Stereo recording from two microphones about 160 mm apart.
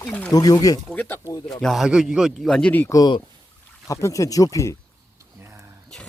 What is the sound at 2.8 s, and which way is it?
Speech, 20° left (ahead or behind).